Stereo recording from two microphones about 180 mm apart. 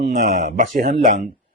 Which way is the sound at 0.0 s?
45° right (ahead or behind).